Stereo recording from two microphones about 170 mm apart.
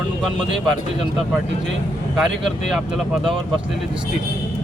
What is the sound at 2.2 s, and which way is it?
Speech, centre (ahead or behind).